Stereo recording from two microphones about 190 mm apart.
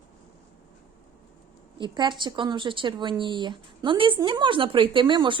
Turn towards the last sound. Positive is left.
turn(degrees=-25)  # may be behind; listen again after turning